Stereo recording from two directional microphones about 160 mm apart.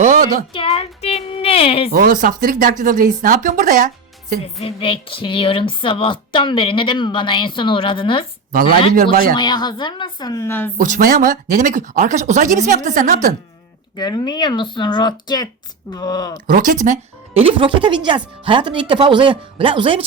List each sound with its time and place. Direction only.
0.0 s a sound: 55° right (ahead or behind)
0.5 s speech: 35° left (ahead or behind)
1.9 s speech: 65° right (ahead or behind)
4.6 s a woman's voice: 35° left (ahead or behind)
9.3 s speech: 25° left (ahead or behind)
10.8 s speech: 55° right (ahead or behind)
13.9 s speech: 25° left (ahead or behind)
16.5 s speech: 60° right (ahead or behind)
17.3 s speech: 35° right (ahead or behind)